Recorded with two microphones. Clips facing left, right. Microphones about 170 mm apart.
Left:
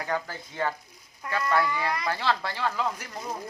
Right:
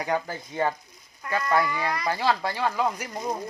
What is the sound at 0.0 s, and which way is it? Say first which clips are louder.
Speech: right 3 dB; 15° right (ahead or behind).